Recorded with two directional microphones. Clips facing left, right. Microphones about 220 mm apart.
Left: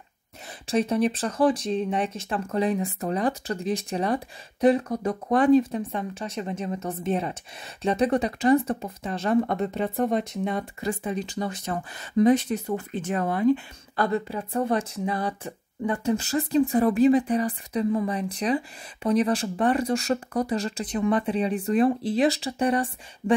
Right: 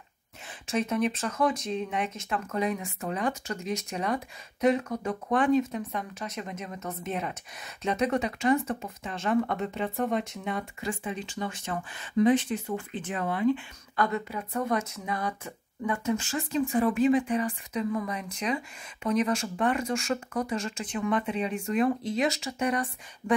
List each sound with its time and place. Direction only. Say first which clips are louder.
0.7 s speech: left 4 dB; 35° left (ahead or behind)